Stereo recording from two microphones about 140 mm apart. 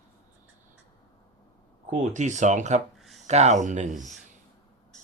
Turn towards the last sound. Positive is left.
turn(degrees=-60)  # may be behind; listen again after turning